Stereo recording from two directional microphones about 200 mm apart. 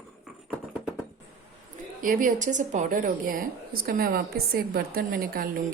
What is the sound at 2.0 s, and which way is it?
A woman's voice, 45° right (ahead or behind).